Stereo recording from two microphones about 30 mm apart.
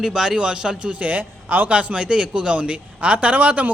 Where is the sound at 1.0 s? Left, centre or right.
Right.